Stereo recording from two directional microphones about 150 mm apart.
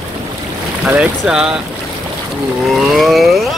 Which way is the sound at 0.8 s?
5° right (ahead or behind).